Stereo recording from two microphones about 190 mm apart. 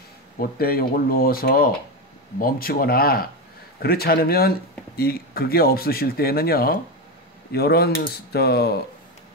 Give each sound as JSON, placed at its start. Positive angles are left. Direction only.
{"t": 0.4, "sound": "speech", "side_deg": 50}